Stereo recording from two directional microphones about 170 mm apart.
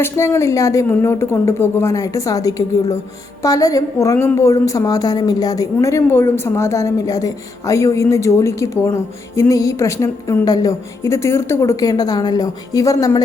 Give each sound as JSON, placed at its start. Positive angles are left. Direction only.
{"t": 0.0, "sound": "a woman's voice", "side_deg": 15}